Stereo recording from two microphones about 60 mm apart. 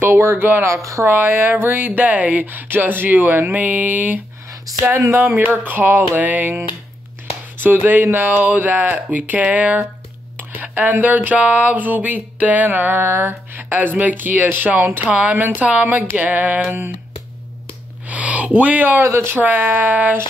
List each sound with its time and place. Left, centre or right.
0.0 s speech: right
5.1 s speech: right
7.5 s a sound: right
13.0 s speech: right
15.0 s a sound: right
18.0 s speech: right
18.9 s speech: right
19.3 s speech: right